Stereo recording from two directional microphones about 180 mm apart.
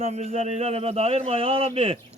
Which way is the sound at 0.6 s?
35° right (ahead or behind).